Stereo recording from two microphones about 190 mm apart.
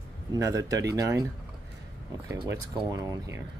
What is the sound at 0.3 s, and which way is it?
Speech, 15° right (ahead or behind).